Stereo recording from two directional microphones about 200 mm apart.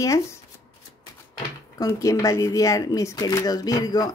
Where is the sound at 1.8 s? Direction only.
15° left (ahead or behind).